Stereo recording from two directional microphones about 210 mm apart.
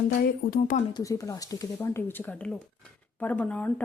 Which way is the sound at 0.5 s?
40° left (ahead or behind).